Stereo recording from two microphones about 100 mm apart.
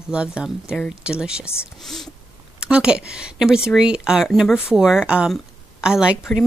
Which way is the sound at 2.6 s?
10° right (ahead or behind).